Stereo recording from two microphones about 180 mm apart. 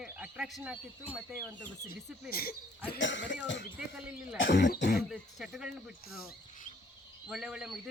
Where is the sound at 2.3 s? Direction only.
55° left (ahead or behind).